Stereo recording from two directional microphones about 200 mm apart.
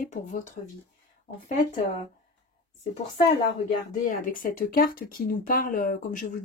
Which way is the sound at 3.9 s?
40° left (ahead or behind).